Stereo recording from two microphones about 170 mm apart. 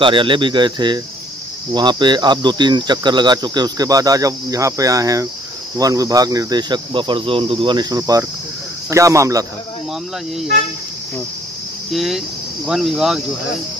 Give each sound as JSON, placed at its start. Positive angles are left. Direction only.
{"t": 0.0, "sound": "speech", "side_deg": -30}
{"t": 11.9, "sound": "speech", "side_deg": 0}